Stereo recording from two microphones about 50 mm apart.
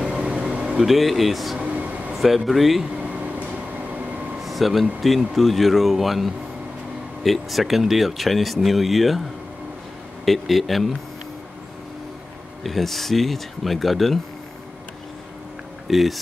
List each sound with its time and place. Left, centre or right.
0.0 s air conditioning: centre
0.7 s speech: centre
1.6 s vehicle: right
2.1 s speech: centre
3.0 s a sound: right
4.4 s air conditioning: centre
5.3 s speech: centre
10.2 s speech: centre
12.6 s speech: centre
15.9 s speech: centre